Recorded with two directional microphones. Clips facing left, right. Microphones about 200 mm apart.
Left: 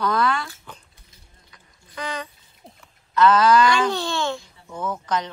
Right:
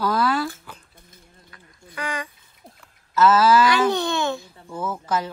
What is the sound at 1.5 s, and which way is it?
Duck, 10° right (ahead or behind).